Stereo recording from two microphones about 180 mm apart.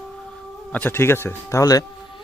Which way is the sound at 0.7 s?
10° left (ahead or behind).